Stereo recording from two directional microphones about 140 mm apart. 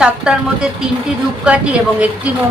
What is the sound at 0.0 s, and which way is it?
A woman's voice, 5° right (ahead or behind).